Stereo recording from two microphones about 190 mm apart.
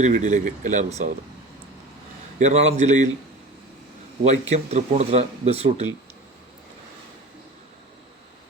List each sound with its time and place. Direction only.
0.0 s speech: 40° right (ahead or behind)
2.4 s speech: 35° right (ahead or behind)
4.2 s speech: 35° right (ahead or behind)